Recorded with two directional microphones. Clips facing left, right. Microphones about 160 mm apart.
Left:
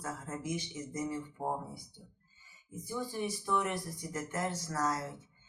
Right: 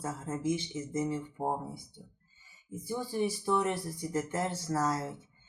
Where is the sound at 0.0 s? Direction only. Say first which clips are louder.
Right 6 dB; 25° right (ahead or behind).